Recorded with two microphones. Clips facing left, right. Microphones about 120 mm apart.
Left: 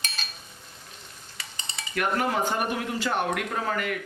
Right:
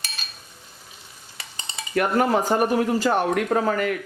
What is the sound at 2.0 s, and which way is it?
Speech, 40° right (ahead or behind).